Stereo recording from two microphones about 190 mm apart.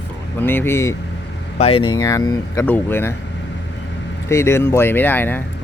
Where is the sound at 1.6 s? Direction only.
30° left (ahead or behind); by 3.1 s 10° left (ahead or behind).